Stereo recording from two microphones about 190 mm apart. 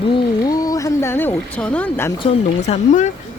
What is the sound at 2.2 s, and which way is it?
Speech, 35° left (ahead or behind).